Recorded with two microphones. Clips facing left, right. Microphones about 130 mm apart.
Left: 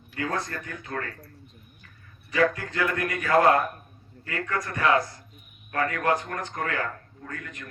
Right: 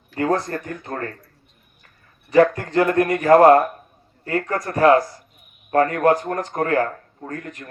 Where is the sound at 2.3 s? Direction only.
50° right (ahead or behind).